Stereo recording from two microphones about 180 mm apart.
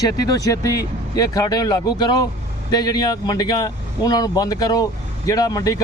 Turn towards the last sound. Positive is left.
turn(degrees=20)  # may be behind; listen again after turning